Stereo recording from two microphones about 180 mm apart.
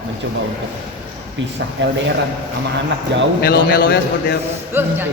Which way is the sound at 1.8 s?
90° right.